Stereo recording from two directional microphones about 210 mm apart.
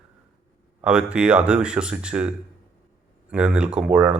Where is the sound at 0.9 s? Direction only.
5° right (ahead or behind).